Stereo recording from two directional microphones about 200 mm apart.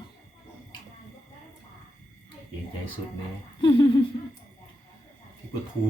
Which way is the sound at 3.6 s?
25° left (ahead or behind).